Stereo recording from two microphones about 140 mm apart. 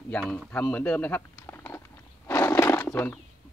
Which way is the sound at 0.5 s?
10° left (ahead or behind).